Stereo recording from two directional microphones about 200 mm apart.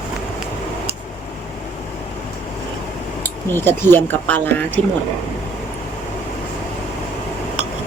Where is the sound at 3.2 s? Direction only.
10° left (ahead or behind).